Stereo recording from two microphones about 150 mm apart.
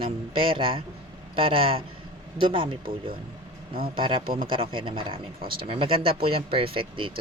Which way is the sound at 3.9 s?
35° right (ahead or behind).